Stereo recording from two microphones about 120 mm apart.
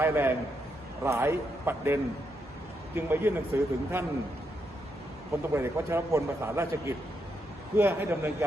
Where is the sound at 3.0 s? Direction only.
20° right (ahead or behind).